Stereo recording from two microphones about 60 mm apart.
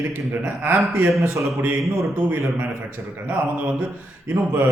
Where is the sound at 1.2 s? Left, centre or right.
Right.